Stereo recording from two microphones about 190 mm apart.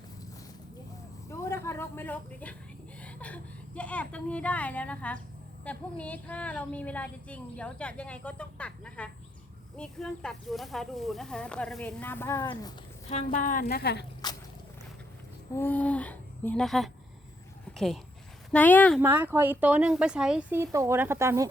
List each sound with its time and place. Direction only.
1.3 s a sound: 15° left (ahead or behind)
3.0 s a woman's voice: 5° left (ahead or behind)
13.1 s a woman's voice: 40° left (ahead or behind); by 14.0 s 55° left (ahead or behind)
14.2 s a sound: 20° left (ahead or behind)
15.5 s a woman's voice: 10° left (ahead or behind)
18.9 s speech: 10° right (ahead or behind)